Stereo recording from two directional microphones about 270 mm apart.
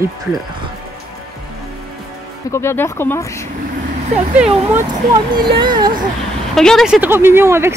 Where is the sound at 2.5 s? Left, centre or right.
Centre.